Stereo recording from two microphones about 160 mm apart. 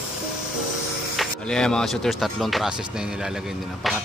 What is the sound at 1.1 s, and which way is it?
Speech, centre (ahead or behind).